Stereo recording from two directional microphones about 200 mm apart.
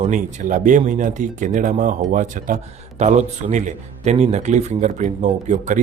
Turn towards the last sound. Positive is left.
turn(degrees=-40)  # may be behind; listen again after turning